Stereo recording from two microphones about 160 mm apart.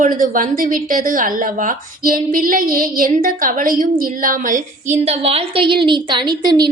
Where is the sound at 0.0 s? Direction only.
60° right (ahead or behind).